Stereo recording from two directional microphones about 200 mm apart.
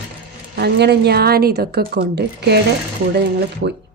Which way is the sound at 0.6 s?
55° right (ahead or behind).